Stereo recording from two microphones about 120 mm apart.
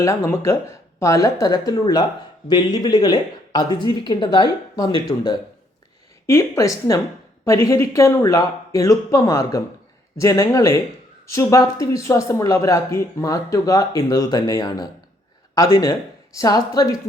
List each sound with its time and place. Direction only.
0.0 s speech: 25° left (ahead or behind); by 5.4 s 40° left (ahead or behind)
6.2 s speech: 20° left (ahead or behind)